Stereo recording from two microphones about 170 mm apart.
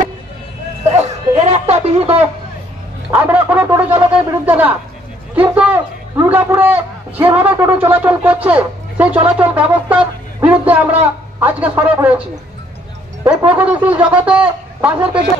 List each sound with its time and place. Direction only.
0.9 s snicker: 40° right (ahead or behind)
3.1 s a sound: 10° right (ahead or behind)
4.5 s a man's voice: 10° right (ahead or behind)
13.2 s speech: 20° right (ahead or behind)
13.6 s a man's voice: 10° right (ahead or behind)